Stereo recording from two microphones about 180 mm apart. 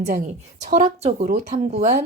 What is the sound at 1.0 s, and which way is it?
Speech, 45° right (ahead or behind).